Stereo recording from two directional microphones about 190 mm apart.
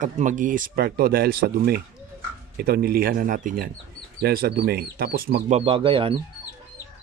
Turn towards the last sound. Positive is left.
turn(degrees=-25)  # may be behind; listen again after turning